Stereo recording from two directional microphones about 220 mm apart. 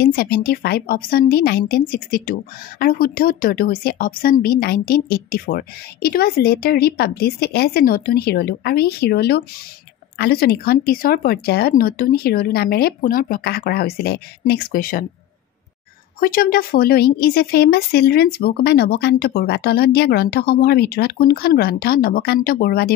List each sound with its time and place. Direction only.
0.0 s speech: 40° left (ahead or behind)
16.2 s speech: 40° left (ahead or behind)